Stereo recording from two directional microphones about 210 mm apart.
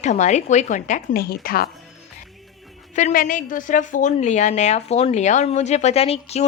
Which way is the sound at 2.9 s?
40° left (ahead or behind).